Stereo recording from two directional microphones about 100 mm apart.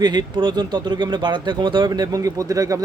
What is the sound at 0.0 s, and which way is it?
Speech, 45° right (ahead or behind).